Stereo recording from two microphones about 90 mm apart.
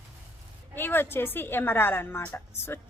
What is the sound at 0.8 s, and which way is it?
A woman's voice, 25° left (ahead or behind).